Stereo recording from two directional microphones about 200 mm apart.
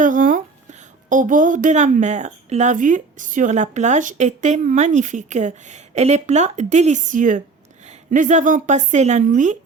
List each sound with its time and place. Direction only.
0.0 s a woman's voice: 40° right (ahead or behind)